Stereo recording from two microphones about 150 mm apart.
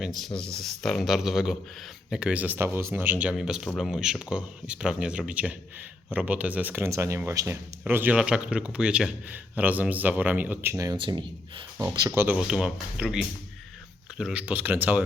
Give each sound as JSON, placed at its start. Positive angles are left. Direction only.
{"t": 0.0, "sound": "speech", "side_deg": 0}
{"t": 10.9, "sound": "speech", "side_deg": -35}
{"t": 11.8, "sound": "speech", "side_deg": -20}
{"t": 12.4, "sound": "speech", "side_deg": -5}